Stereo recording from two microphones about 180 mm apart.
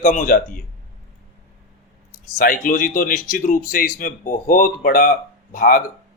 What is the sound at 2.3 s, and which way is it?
Speech, 50° left (ahead or behind).